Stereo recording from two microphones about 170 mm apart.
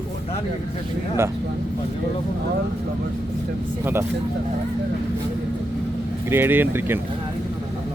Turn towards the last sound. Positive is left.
turn(degrees=-10)  # may be behind; listen again after turning